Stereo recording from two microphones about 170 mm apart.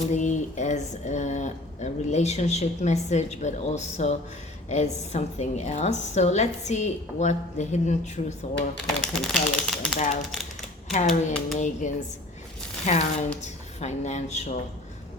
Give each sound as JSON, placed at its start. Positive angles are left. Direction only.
{"t": 0.1, "sound": "speech", "side_deg": 45}
{"t": 9.0, "sound": "speech", "side_deg": 0}
{"t": 10.0, "sound": "speech", "side_deg": 45}